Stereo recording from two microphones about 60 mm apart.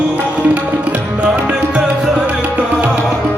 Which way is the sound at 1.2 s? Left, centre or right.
Right.